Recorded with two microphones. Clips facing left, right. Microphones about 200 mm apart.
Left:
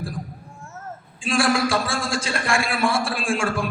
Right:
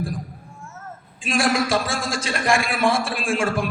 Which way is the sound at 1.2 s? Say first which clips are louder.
Left 1 dB; 30° left (ahead or behind).